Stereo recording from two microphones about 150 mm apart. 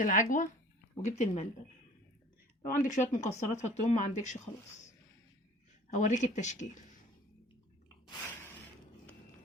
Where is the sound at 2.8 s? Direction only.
55° left (ahead or behind).